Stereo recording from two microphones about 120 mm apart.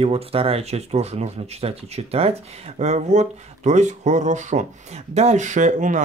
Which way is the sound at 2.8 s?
70° right (ahead or behind).